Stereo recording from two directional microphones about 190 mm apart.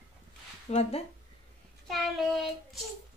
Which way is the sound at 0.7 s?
35° left (ahead or behind).